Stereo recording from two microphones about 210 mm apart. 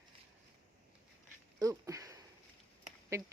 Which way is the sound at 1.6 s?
15° right (ahead or behind).